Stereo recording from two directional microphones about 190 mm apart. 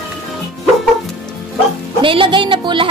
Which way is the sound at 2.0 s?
25° right (ahead or behind).